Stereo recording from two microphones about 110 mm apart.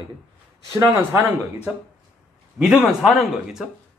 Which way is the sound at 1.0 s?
15° right (ahead or behind).